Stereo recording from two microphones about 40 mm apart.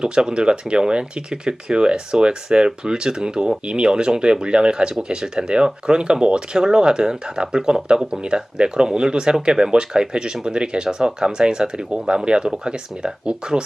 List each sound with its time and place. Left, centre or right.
0.0 s speech: centre